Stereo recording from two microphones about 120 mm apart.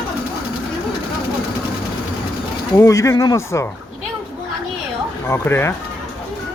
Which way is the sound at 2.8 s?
25° left (ahead or behind).